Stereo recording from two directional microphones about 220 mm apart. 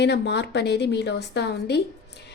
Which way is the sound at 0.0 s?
50° left (ahead or behind).